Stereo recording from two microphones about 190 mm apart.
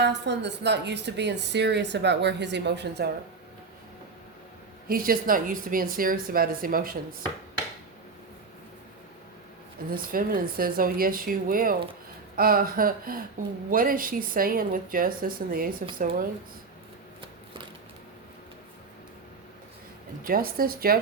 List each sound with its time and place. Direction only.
0.0 s a woman's voice: 65° right (ahead or behind)
4.9 s a woman's voice: 50° right (ahead or behind)
9.9 s a woman's voice: 50° right (ahead or behind)
20.2 s a woman's voice: 50° right (ahead or behind)